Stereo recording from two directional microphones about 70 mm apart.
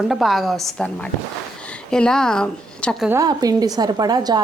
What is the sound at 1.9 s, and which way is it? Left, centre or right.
Speech, centre.